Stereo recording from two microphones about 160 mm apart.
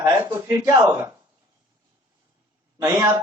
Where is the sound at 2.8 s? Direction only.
20° right (ahead or behind).